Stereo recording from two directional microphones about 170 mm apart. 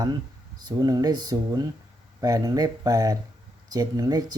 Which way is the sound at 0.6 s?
20° right (ahead or behind).